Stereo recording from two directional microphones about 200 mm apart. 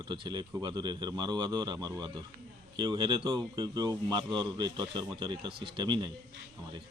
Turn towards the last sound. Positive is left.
turn(degrees=-25)  # may be behind; listen again after turning